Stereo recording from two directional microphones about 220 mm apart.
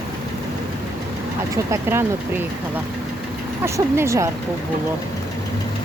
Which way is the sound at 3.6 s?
10° right (ahead or behind).